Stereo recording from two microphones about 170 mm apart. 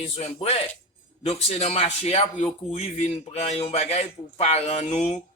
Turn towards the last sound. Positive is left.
turn(degrees=40)  # may be behind; listen again after turning